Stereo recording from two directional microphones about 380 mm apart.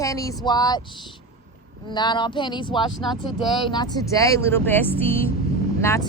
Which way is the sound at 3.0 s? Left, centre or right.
Centre.